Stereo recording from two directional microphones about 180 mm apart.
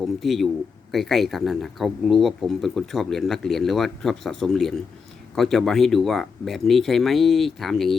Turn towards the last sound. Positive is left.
turn(degrees=0)  # may be behind; listen again after turning